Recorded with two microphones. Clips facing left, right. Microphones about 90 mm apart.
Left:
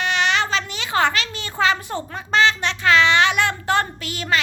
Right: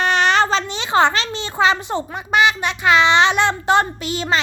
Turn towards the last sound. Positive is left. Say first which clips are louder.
# right 3 dB
turn(degrees=-25)  # may be behind; listen again after turning